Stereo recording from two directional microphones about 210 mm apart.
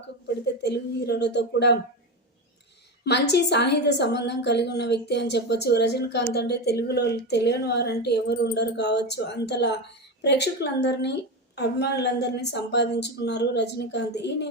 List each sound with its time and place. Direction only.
0.6 s a woman's voice: 50° left (ahead or behind)
3.0 s a woman's voice: 55° left (ahead or behind)